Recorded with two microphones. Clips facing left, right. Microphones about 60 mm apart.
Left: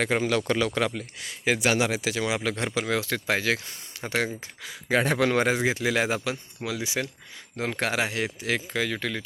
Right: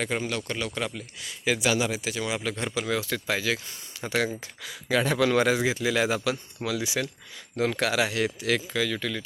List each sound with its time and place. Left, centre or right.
0.0 s speech: left
1.2 s speech: left
3.0 s speech: left
4.0 s a man's voice: left
7.8 s speech: left
9.0 s speech: left